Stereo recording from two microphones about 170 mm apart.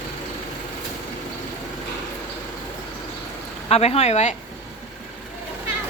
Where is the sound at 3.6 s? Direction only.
35° left (ahead or behind).